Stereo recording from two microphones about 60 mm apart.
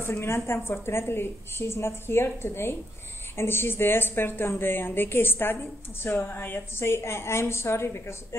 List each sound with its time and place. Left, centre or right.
0.0 s a woman's voice: left